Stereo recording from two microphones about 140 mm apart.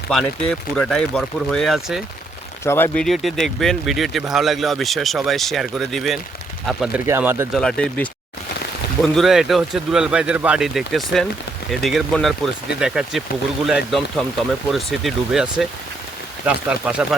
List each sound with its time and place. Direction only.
0.1 s speech: 5° left (ahead or behind)
2.6 s speech: 15° left (ahead or behind)
3.0 s speech: centre (ahead or behind)
7.1 s speech: 15° right (ahead or behind)
7.5 s speech: 5° left (ahead or behind)
9.1 s speech: centre (ahead or behind)